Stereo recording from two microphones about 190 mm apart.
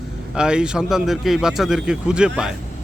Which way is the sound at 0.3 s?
5° right (ahead or behind).